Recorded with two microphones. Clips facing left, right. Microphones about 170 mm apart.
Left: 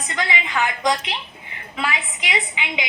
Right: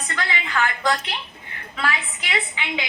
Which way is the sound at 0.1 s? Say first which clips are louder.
Left 2 dB; 15° left (ahead or behind).